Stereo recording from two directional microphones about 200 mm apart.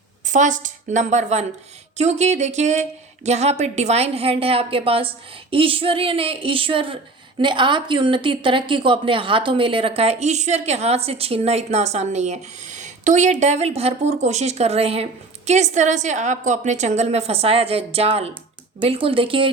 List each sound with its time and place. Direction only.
0.3 s a woman's voice: 40° right (ahead or behind)